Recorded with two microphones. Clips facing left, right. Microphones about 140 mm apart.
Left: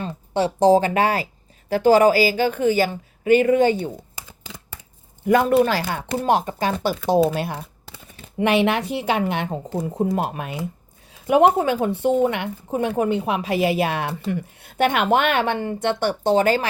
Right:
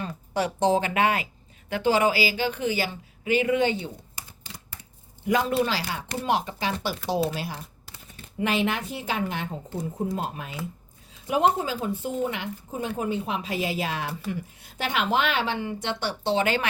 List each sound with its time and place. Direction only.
0.0 s speech: 30° left (ahead or behind); by 3.9 s 45° left (ahead or behind)
5.2 s speech: 55° left (ahead or behind)
8.4 s speech: 70° left (ahead or behind); by 16.6 s 40° left (ahead or behind)